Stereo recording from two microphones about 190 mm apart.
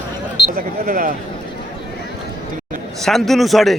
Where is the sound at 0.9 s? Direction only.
45° right (ahead or behind).